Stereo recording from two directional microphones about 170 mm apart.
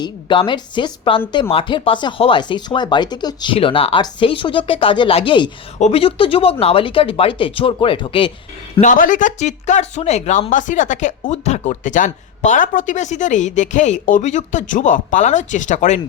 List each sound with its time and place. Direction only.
0.0 s speech: 30° left (ahead or behind)
8.7 s speech: 45° left (ahead or behind)